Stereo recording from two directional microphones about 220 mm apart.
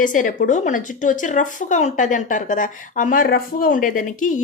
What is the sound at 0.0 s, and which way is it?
Speech, 35° left (ahead or behind).